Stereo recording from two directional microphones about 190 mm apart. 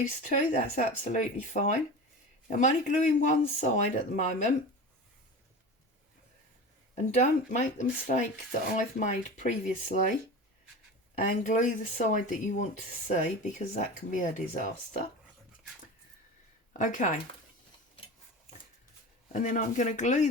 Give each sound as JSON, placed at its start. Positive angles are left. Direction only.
{"t": 0.2, "sound": "speech", "side_deg": 40}
{"t": 6.9, "sound": "speech", "side_deg": 40}
{"t": 11.2, "sound": "speech", "side_deg": 40}
{"t": 16.7, "sound": "speech", "side_deg": 40}
{"t": 19.3, "sound": "speech", "side_deg": 40}